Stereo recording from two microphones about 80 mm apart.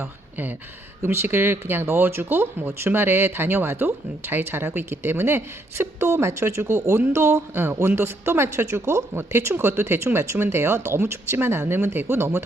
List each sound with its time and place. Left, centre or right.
0.0 s speech: right